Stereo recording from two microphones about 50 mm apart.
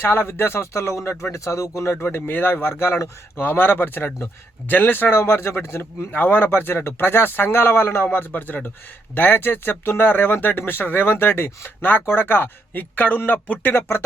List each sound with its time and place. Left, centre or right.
0.0 s speech: left
1.2 s speech: left
2.1 s speech: left
3.4 s speech: left
5.1 s speech: left
6.1 s speech: left
8.0 s speech: left